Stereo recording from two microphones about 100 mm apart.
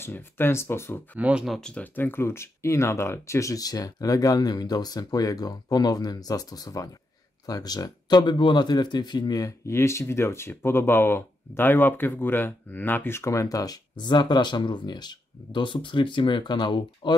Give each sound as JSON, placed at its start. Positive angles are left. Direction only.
{"t": 0.0, "sound": "speech", "side_deg": 20}
{"t": 1.1, "sound": "speech", "side_deg": -10}
{"t": 2.0, "sound": "speech", "side_deg": 20}